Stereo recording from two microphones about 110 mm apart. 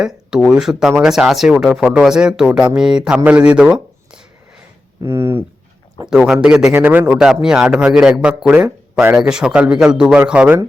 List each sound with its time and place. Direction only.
0.0 s a man's voice: 5° right (ahead or behind)
5.0 s speech: 25° right (ahead or behind)
6.1 s a man's voice: 5° right (ahead or behind)
6.7 s a man's voice: 20° right (ahead or behind)